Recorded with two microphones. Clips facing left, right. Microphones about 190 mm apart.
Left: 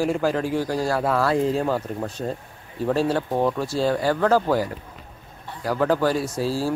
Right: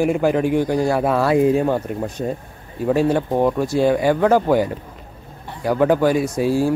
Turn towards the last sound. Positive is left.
turn(degrees=-15)  # may be behind; listen again after turning